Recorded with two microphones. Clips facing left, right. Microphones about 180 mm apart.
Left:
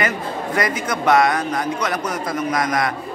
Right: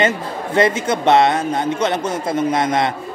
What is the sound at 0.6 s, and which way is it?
A man's voice, 25° right (ahead or behind).